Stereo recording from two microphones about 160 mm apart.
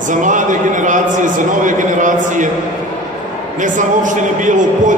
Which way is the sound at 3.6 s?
55° right (ahead or behind).